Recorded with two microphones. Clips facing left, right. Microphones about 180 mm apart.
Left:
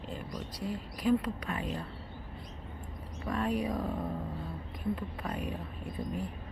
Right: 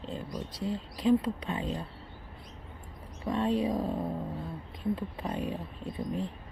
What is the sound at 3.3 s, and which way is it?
Speech, 25° right (ahead or behind).